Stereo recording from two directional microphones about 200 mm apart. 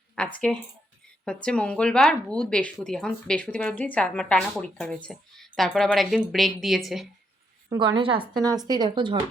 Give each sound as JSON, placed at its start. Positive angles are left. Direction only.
{"t": 0.2, "sound": "a sound", "side_deg": 5}
{"t": 1.2, "sound": "speech", "side_deg": 5}
{"t": 7.7, "sound": "speech", "side_deg": -20}